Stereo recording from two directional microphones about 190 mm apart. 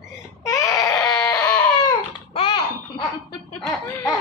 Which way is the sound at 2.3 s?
30° left (ahead or behind).